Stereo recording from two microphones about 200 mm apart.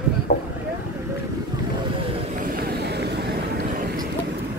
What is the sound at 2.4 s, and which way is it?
Vehicle, 50° right (ahead or behind).